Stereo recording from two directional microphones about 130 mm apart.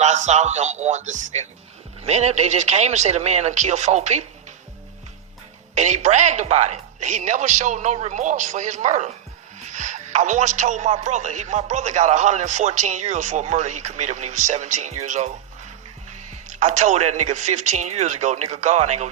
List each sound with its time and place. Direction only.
0.0 s speech: 65° right (ahead or behind)
5.7 s speech: 65° right (ahead or behind)